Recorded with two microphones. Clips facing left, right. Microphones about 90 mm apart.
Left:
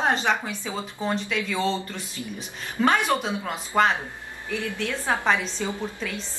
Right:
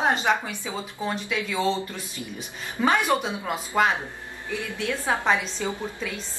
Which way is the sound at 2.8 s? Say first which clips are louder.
Even; 15° right (ahead or behind).